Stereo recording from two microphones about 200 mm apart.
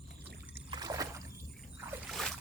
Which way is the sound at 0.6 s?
20° right (ahead or behind).